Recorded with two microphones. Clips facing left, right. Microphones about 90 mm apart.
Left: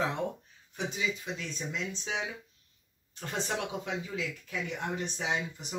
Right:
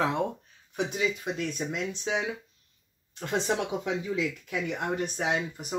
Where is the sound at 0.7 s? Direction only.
60° right (ahead or behind).